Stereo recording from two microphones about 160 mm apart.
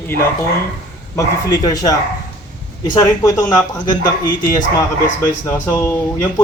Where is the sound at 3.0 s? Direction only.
20° left (ahead or behind).